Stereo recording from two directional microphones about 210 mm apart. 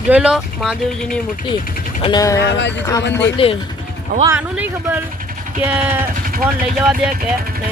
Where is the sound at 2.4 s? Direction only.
55° left (ahead or behind).